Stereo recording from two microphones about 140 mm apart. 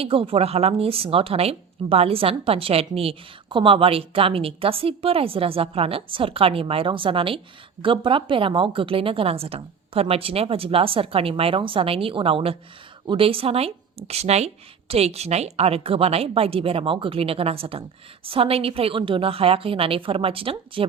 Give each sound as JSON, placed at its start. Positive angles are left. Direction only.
{"t": 0.0, "sound": "a woman's voice", "side_deg": -40}